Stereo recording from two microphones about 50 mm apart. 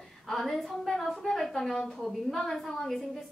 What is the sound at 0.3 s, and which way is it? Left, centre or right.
A woman's voice, centre.